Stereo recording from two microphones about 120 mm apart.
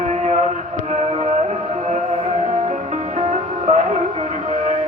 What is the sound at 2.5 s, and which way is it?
Music, 85° right.